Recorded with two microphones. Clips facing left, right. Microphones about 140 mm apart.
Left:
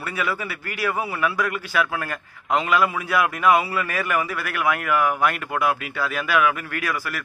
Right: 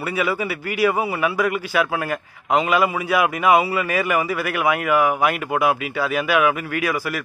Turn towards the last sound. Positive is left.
turn(degrees=-10)  # may be behind; listen again after turning